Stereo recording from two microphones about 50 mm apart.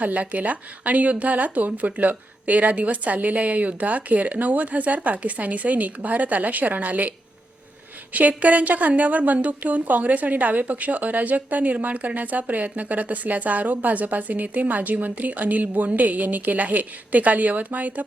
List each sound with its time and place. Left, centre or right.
0.0 s a woman's voice: right
8.1 s a woman's voice: right